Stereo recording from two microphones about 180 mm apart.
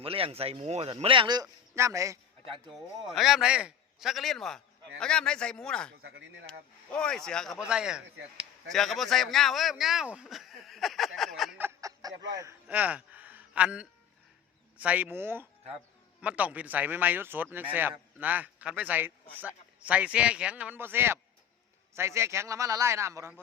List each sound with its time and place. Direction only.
0.0 s speech: 30° right (ahead or behind)
3.2 s a man's voice: centre (ahead or behind)
6.0 s speech: 80° right
6.4 s a man's voice: 5° left (ahead or behind)
11.6 s a sound: 20° right (ahead or behind)
12.3 s speech: 15° right (ahead or behind)
12.6 s a sound: 10° right (ahead or behind)
14.8 s speech: 10° right (ahead or behind)